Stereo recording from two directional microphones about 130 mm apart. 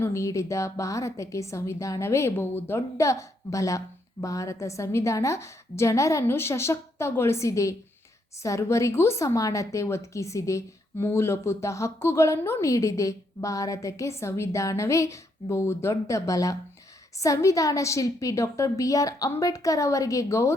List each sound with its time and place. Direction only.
0.0 s a woman's voice: 25° left (ahead or behind)